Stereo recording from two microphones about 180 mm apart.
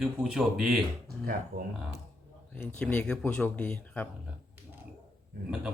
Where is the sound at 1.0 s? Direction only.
55° right (ahead or behind).